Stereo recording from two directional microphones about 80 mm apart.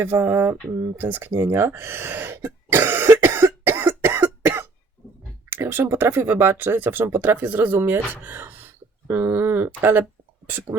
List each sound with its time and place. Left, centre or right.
0.0 s speech: right